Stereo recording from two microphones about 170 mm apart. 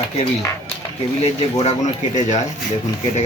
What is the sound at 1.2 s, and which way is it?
Speech, 40° left (ahead or behind).